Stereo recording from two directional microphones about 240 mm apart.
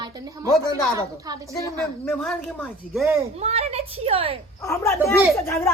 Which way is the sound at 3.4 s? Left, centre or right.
Right.